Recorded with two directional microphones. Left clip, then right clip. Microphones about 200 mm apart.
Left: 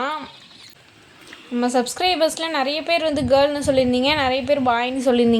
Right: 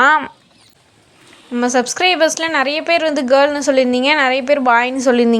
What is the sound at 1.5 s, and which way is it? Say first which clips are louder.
A woman's voice: right 5 dB; 15° right (ahead or behind).